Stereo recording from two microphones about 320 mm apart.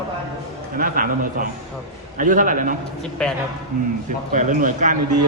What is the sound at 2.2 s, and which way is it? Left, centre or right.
Speech, right.